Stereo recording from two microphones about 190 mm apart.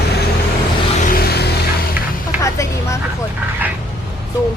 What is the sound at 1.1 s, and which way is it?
Music, 55° left (ahead or behind).